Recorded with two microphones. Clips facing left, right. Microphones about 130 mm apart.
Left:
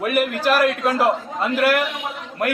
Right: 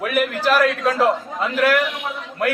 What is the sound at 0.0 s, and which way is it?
A man's voice, 10° left (ahead or behind).